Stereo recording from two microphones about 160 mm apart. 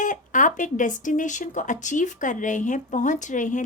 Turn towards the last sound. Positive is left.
turn(degrees=50)  # may be behind; listen again after turning